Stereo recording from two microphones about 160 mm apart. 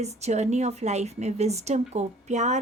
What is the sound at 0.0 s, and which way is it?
A woman's voice, 45° right (ahead or behind).